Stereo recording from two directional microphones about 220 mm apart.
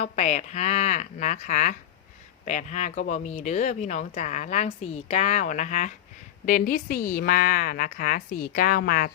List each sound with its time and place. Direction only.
0.0 s speech: 30° left (ahead or behind)